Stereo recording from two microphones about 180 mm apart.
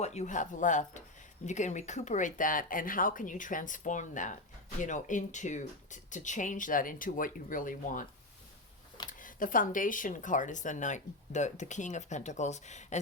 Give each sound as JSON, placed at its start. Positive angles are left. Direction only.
{"t": 0.0, "sound": "speech", "side_deg": 40}
{"t": 9.0, "sound": "speech", "side_deg": 50}